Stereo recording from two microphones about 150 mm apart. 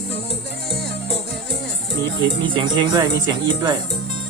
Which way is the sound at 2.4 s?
30° right (ahead or behind).